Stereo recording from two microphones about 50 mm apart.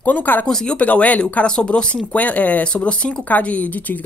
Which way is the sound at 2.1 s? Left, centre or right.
Left.